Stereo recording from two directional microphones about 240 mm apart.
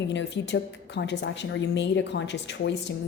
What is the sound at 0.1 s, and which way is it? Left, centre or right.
Speech, left.